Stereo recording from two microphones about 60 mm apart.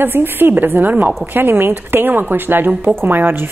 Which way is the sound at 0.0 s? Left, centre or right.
Right.